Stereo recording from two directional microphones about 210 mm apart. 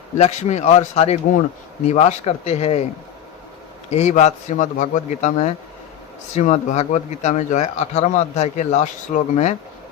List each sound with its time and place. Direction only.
0.2 s speech: 35° left (ahead or behind)
3.9 s speech: 35° left (ahead or behind)